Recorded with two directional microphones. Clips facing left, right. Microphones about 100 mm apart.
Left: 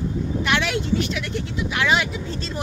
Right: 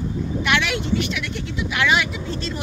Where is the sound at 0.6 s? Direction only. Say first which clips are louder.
Even; 35° left (ahead or behind).